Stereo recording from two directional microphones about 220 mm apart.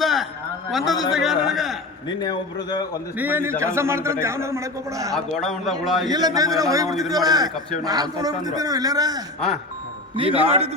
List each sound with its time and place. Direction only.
0.0 s a sound: centre (ahead or behind)
0.7 s a man's voice: centre (ahead or behind)
2.0 s a man's voice: 20° left (ahead or behind)
3.2 s a man's voice: 10° right (ahead or behind)
5.1 s a man's voice: centre (ahead or behind)
6.1 s a man's voice: 20° right (ahead or behind)